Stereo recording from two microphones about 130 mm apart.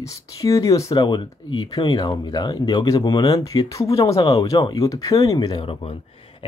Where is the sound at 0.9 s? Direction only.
35° left (ahead or behind).